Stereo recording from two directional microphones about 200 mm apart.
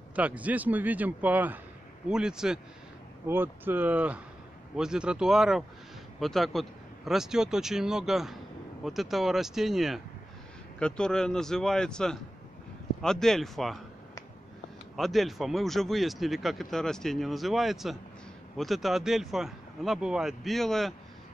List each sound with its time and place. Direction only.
0.1 s a man's voice: 5° right (ahead or behind)
15.0 s speech: centre (ahead or behind)